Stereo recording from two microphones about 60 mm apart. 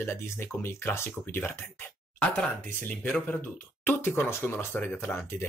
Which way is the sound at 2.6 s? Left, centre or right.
Left.